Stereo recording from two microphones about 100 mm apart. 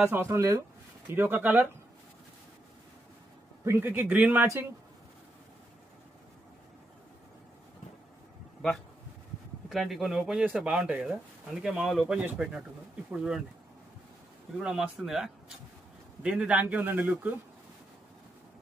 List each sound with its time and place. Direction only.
0.2 s speech: 30° right (ahead or behind)
3.6 s speech: 20° right (ahead or behind)
9.7 s speech: centre (ahead or behind)
14.6 s speech: 5° right (ahead or behind)